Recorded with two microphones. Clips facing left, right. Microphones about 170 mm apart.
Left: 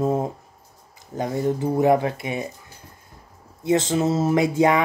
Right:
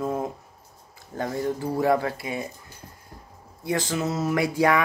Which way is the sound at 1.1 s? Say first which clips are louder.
Left 4 dB; 20° left (ahead or behind).